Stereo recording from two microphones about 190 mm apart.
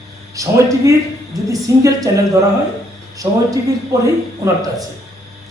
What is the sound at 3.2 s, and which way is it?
A man's voice, 20° right (ahead or behind).